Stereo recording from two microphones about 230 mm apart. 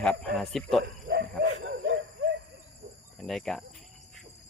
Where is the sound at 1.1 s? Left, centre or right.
Right.